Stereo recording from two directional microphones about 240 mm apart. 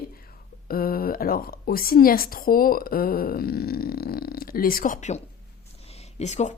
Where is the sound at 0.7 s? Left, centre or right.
Left.